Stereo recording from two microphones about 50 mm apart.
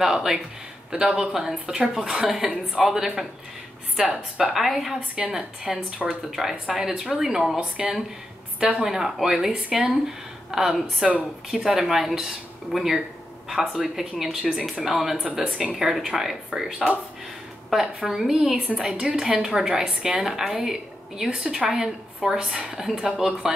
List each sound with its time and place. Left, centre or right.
0.0 s speech: centre
4.6 s speech: centre
14.5 s speech: centre
15.4 s speech: centre
15.7 s speech: centre